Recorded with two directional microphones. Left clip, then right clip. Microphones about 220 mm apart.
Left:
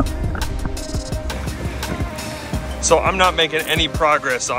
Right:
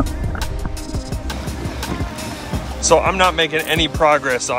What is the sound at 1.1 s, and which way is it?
Music, centre (ahead or behind).